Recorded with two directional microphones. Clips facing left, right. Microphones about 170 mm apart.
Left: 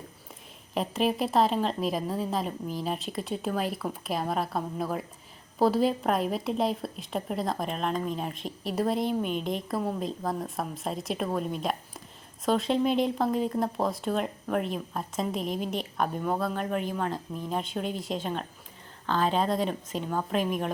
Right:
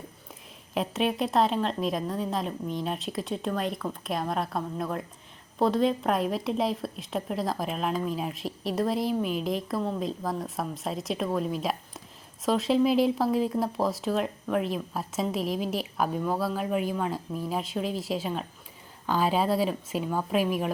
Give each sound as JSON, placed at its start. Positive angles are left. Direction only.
{"t": 0.7, "sound": "a woman's voice", "side_deg": 0}